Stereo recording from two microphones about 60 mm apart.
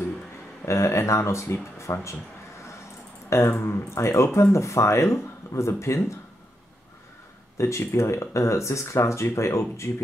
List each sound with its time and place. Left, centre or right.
0.7 s speech: left
3.3 s speech: left
7.5 s speech: left